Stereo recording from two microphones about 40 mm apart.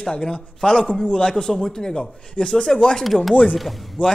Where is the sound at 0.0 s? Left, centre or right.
Centre.